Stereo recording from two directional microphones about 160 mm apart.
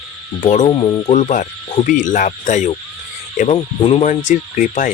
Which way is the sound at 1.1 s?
50° left (ahead or behind).